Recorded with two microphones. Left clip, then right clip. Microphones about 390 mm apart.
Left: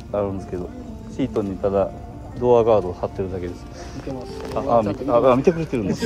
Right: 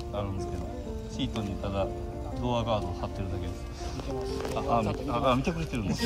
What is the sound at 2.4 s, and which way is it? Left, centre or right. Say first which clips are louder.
Speech: left 16 dB; centre.